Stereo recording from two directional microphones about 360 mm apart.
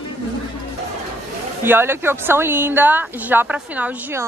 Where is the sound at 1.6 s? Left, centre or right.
Centre.